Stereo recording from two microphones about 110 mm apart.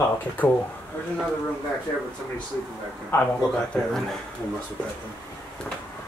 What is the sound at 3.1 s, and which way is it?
Speech, 20° left (ahead or behind).